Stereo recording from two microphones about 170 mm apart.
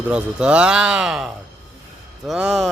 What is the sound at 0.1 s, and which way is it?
Speech, 5° right (ahead or behind).